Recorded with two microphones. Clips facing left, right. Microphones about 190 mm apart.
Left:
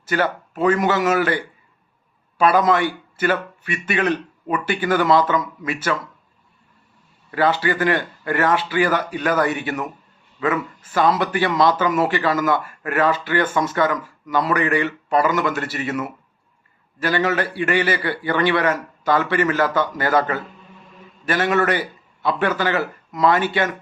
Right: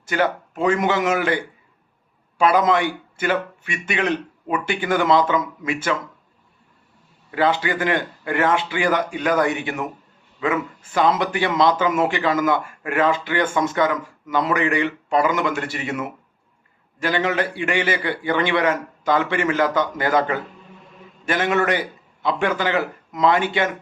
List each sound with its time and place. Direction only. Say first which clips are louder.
0.1 s a man's voice: even; 20° right (ahead or behind)
2.4 s a man's voice: left 1 dB; 20° right (ahead or behind)
7.3 s a man's voice: left 1 dB; 20° right (ahead or behind)